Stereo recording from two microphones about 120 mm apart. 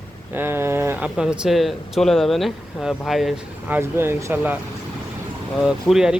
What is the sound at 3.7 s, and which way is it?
Speech, 20° right (ahead or behind).